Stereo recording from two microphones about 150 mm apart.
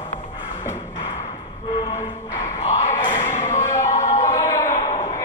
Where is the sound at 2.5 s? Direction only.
45° left (ahead or behind).